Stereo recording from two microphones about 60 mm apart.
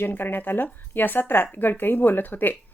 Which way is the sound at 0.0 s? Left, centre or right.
Left.